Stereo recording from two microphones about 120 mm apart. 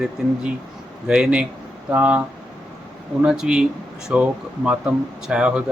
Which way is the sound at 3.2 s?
5° right (ahead or behind).